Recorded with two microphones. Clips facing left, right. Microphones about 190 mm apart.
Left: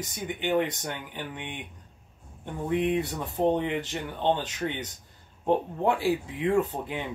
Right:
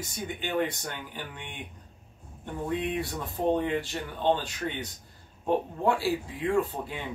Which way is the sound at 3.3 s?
15° left (ahead or behind).